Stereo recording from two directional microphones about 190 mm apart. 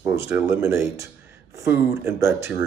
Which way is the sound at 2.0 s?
15° right (ahead or behind).